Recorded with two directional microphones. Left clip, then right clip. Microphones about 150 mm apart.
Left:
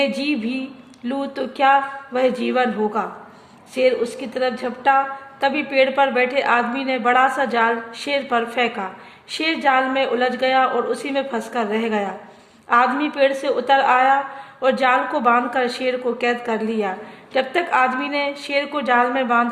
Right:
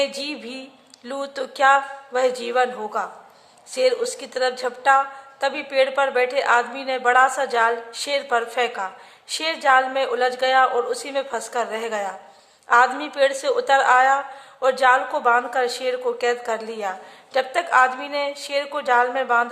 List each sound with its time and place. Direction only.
0.0 s a woman's voice: 35° right (ahead or behind)
3.8 s a woman's voice: 45° right (ahead or behind)